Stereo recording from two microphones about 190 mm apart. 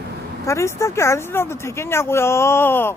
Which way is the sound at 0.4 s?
15° left (ahead or behind).